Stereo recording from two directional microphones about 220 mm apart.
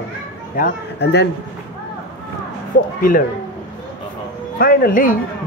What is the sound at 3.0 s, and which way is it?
Speech, 40° left (ahead or behind).